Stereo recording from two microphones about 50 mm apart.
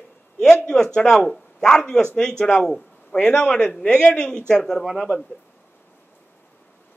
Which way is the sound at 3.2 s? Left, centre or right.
Left.